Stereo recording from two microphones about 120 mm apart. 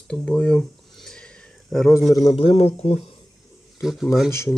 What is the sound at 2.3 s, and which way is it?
Speech, 50° left (ahead or behind).